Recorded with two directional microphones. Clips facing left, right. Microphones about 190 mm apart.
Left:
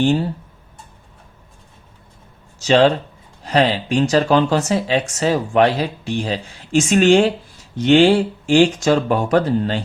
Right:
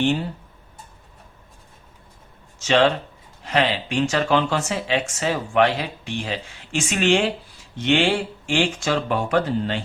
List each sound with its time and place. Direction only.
0.0 s speech: 35° left (ahead or behind)
2.6 s speech: 35° left (ahead or behind)